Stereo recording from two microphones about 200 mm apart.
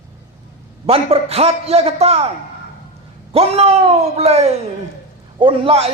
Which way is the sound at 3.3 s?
30° right (ahead or behind).